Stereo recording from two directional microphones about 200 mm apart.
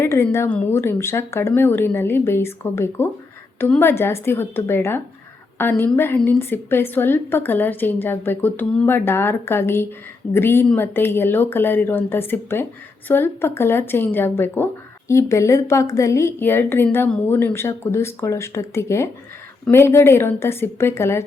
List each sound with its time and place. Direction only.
0.0 s speech: 15° left (ahead or behind)